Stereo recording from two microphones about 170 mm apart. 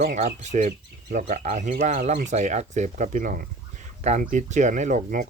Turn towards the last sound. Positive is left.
turn(degrees=-50)  # may be behind; listen again after turning